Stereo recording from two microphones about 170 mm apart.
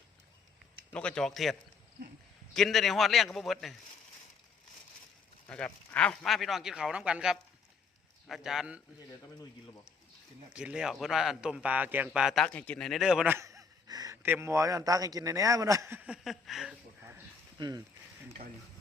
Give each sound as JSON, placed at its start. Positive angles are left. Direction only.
{"t": 0.9, "sound": "speech", "side_deg": 5}
{"t": 5.5, "sound": "speech", "side_deg": 5}
{"t": 10.5, "sound": "a man's voice", "side_deg": -5}
{"t": 17.0, "sound": "a sound", "side_deg": -10}
{"t": 17.6, "sound": "speech", "side_deg": -25}